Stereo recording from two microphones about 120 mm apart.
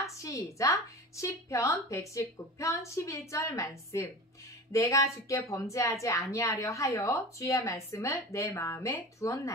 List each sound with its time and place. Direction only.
0.0 s a woman's voice: 25° left (ahead or behind)